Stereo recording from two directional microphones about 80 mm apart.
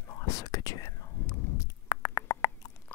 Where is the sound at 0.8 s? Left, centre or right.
Left.